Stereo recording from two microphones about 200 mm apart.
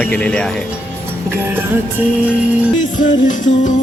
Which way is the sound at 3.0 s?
40° left (ahead or behind).